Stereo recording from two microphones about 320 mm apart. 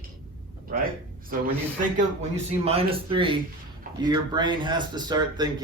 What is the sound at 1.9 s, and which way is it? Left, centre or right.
Speech, right.